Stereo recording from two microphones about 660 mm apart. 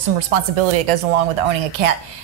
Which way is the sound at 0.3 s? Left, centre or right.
Right.